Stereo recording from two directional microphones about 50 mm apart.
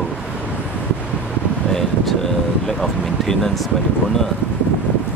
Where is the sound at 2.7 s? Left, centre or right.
Centre.